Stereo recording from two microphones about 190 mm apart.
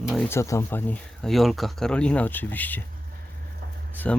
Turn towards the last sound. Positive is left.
turn(degrees=5)  # may be behind; listen again after turning